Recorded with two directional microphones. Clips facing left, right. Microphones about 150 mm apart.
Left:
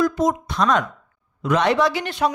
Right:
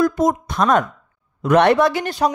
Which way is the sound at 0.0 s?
50° right (ahead or behind).